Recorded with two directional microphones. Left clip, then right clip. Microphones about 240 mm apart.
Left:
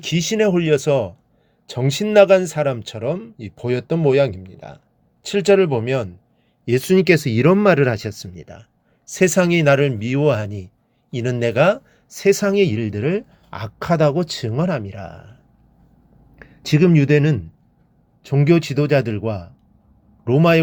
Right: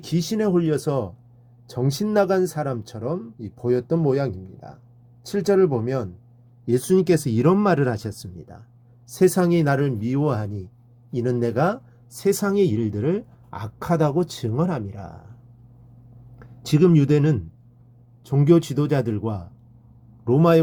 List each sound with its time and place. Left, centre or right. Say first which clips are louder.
0.0 s speech: left 6 dB; left
16.6 s speech: left 2 dB; centre
18.3 s speech: left 1 dB; left